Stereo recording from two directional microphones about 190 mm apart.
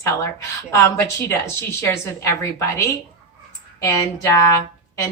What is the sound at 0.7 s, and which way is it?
Speech, 15° left (ahead or behind).